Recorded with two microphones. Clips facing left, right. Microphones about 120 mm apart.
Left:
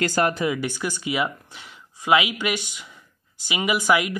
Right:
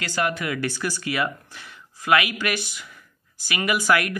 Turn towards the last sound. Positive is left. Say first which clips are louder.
# left 1 dB
turn(degrees=15)  # may be behind; listen again after turning